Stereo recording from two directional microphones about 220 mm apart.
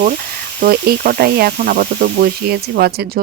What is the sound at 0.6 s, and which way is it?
Speech, 40° right (ahead or behind).